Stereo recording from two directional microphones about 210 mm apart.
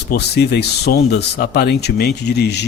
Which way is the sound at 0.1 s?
50° left (ahead or behind).